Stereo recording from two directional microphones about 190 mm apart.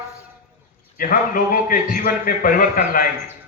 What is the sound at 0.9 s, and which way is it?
A man's voice, 45° left (ahead or behind).